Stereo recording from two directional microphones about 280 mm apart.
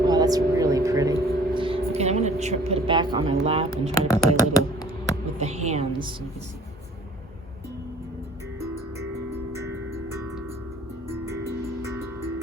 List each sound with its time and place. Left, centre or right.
0.0 s vehicle: centre
3.4 s speech: right
3.9 s speech: centre
5.4 s a sound: right
9.3 s music: centre